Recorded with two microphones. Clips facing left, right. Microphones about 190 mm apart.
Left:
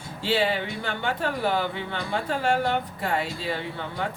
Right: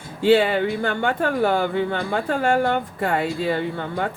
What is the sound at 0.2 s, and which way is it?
Speech, 50° right (ahead or behind).